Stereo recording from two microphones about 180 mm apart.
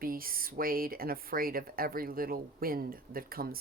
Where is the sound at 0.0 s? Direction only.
55° right (ahead or behind).